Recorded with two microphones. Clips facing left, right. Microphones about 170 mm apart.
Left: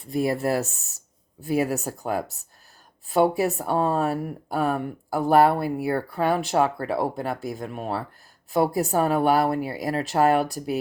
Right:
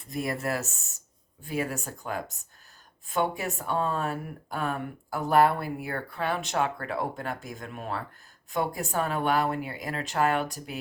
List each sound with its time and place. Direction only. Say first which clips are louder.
0.4 s speech: left 7 dB; 35° left (ahead or behind)